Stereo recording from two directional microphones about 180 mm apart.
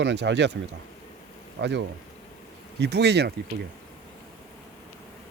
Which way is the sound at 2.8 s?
70° right (ahead or behind).